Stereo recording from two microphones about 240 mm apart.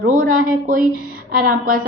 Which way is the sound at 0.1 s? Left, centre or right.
Right.